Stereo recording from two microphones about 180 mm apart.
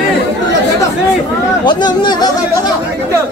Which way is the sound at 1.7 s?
25° left (ahead or behind).